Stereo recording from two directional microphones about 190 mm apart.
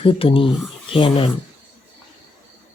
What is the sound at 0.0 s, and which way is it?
Speech, 30° left (ahead or behind).